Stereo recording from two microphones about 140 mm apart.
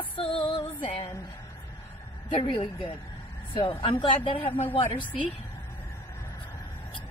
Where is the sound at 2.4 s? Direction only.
40° left (ahead or behind).